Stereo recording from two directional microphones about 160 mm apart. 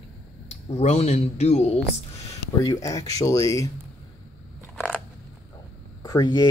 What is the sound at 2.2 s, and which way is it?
Speech, 20° left (ahead or behind).